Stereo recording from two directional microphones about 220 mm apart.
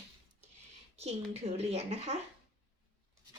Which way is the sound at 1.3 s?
30° right (ahead or behind).